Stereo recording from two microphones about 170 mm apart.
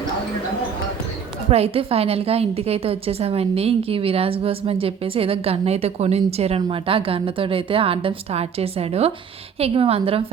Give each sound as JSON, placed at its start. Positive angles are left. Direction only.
{"t": 1.5, "sound": "a woman's voice", "side_deg": -35}